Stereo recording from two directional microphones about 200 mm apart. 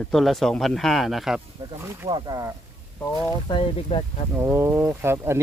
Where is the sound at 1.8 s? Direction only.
15° right (ahead or behind).